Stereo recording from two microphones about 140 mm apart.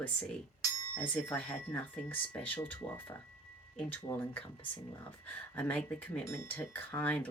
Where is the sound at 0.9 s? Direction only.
10° left (ahead or behind).